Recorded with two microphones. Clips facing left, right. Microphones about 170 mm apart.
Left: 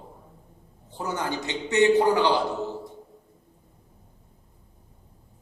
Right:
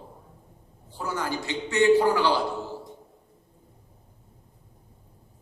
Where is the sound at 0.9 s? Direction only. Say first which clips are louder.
Left 1 dB; 20° left (ahead or behind).